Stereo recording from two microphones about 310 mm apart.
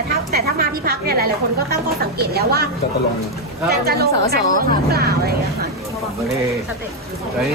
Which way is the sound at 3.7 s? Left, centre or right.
Right.